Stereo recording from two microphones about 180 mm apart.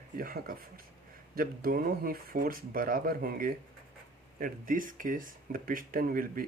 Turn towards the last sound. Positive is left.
turn(degrees=-50)  # may be behind; listen again after turning